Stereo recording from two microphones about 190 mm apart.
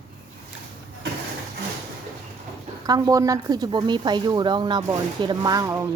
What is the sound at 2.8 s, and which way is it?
A woman's voice, 20° right (ahead or behind).